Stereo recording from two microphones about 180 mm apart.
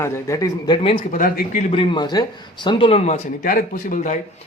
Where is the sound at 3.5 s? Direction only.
50° left (ahead or behind).